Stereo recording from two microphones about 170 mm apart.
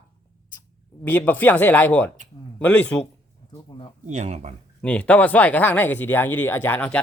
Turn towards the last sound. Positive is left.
turn(degrees=10)  # may be behind; listen again after turning